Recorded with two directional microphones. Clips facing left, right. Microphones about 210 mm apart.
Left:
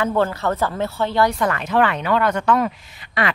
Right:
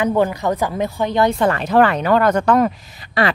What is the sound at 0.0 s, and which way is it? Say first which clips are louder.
Speech: right 3 dB; 15° right (ahead or behind).